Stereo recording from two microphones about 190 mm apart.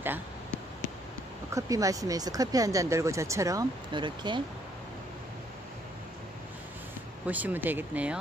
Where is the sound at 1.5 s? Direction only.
20° right (ahead or behind).